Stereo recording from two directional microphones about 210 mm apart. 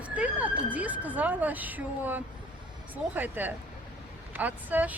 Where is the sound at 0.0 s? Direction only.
5° right (ahead or behind).